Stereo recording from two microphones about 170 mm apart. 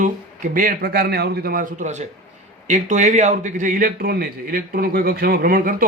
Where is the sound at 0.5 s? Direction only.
55° right (ahead or behind).